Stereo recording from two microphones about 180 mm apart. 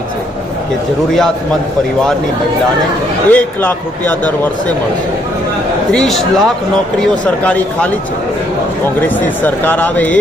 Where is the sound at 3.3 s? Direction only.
10° left (ahead or behind).